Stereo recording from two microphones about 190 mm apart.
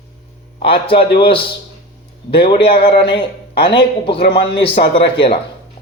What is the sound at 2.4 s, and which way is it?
Speech, 30° left (ahead or behind).